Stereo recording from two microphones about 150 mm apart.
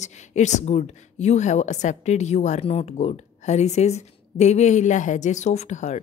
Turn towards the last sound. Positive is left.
turn(degrees=50)  # may be behind; listen again after turning